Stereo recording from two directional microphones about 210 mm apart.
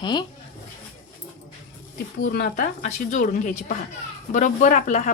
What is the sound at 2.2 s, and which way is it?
Speech, 45° left (ahead or behind).